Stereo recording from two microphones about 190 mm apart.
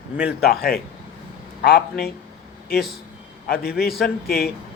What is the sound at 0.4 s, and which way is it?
A man's voice, 55° left (ahead or behind).